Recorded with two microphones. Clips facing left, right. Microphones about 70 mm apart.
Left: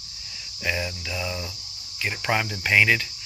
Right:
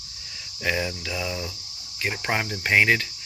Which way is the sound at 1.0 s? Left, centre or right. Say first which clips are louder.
Right 1 dB; right.